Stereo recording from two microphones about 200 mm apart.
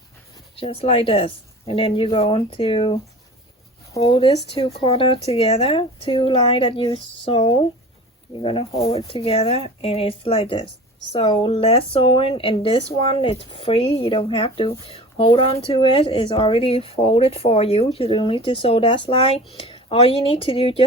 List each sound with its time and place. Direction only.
0.5 s speech: 30° left (ahead or behind)
4.0 s speech: 30° left (ahead or behind)